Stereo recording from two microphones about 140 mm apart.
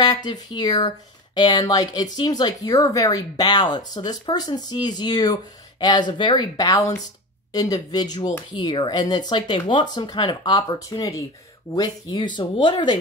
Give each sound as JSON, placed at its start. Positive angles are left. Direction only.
{"t": 0.0, "sound": "speech", "side_deg": 30}